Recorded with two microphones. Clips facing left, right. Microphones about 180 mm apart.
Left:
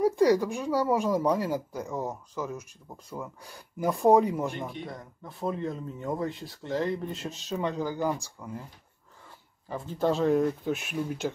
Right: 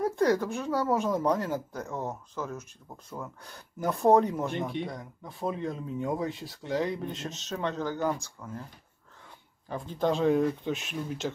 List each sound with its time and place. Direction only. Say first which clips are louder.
0.0 s speech: left 3 dB; 10° left (ahead or behind)
9.7 s speech: left 1 dB; 5° left (ahead or behind)